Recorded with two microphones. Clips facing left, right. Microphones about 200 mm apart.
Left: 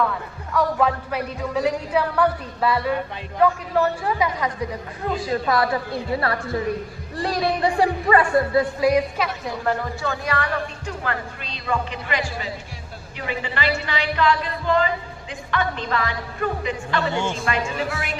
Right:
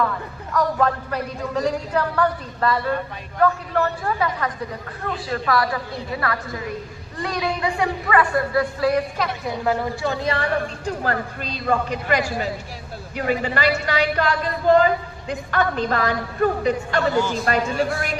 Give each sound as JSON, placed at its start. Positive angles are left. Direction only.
{"t": 0.0, "sound": "a man's voice", "side_deg": 5}
{"t": 5.3, "sound": "a woman's voice", "side_deg": 25}
{"t": 8.8, "sound": "a man's voice", "side_deg": 10}
{"t": 10.0, "sound": "a woman's voice", "side_deg": -20}
{"t": 17.2, "sound": "a woman's voice", "side_deg": 25}
{"t": 17.4, "sound": "a woman's voice", "side_deg": -40}